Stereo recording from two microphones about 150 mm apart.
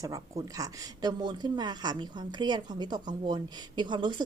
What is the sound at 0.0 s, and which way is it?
Speech, 25° right (ahead or behind).